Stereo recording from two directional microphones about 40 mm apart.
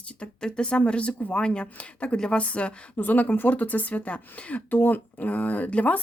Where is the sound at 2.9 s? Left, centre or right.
Left.